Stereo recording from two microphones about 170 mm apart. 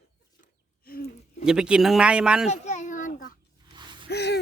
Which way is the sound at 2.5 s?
45° left (ahead or behind).